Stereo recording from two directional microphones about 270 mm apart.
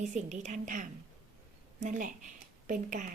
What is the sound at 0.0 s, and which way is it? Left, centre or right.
Speech, right.